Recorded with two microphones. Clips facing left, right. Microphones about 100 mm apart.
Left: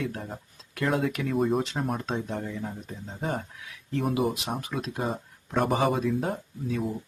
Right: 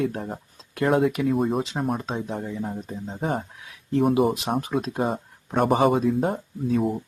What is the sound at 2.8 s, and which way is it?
Speech, 25° right (ahead or behind).